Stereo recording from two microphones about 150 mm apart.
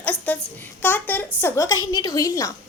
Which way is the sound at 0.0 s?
10° left (ahead or behind).